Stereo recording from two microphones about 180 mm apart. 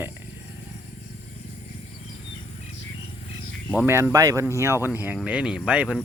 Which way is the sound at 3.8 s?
10° right (ahead or behind).